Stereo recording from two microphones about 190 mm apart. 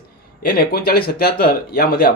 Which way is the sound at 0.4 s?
50° left (ahead or behind).